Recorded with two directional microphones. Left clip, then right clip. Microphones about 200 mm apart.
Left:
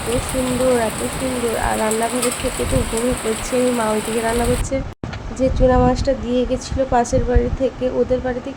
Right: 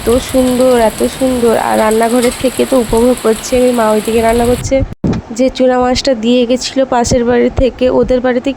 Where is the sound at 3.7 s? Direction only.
35° right (ahead or behind).